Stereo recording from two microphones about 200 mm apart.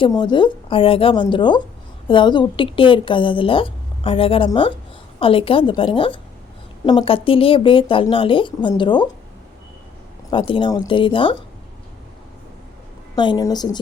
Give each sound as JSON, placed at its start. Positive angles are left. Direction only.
{"t": 0.0, "sound": "a woman's voice", "side_deg": 20}
{"t": 10.2, "sound": "a woman's voice", "side_deg": 25}
{"t": 13.1, "sound": "a woman's voice", "side_deg": 20}